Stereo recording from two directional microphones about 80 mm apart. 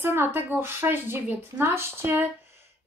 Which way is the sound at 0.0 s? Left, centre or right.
Right.